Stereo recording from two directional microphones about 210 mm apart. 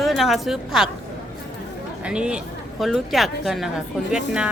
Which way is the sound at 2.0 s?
5° right (ahead or behind).